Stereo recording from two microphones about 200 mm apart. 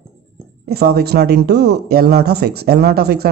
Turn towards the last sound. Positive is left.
turn(degrees=-50)  # may be behind; listen again after turning